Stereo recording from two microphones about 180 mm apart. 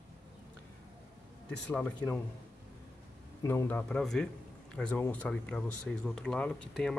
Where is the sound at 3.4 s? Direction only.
15° left (ahead or behind).